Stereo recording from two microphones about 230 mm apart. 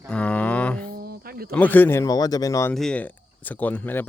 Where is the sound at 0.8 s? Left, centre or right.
Right.